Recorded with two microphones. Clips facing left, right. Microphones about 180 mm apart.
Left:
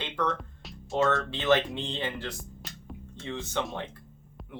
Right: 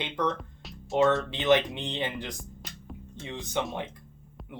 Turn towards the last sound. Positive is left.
turn(degrees=-15)  # may be behind; listen again after turning